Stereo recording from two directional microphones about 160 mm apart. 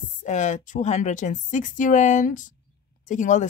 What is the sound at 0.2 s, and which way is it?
Speech, 50° left (ahead or behind).